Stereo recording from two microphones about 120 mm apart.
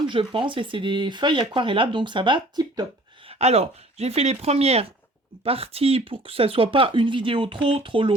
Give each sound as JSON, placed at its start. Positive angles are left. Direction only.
{"t": 0.1, "sound": "speech", "side_deg": -45}
{"t": 3.2, "sound": "speech", "side_deg": -60}